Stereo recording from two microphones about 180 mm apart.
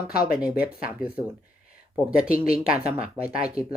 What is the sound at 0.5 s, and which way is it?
Speech, 55° left (ahead or behind).